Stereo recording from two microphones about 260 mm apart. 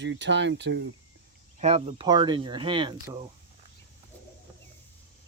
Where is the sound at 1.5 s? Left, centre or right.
Right.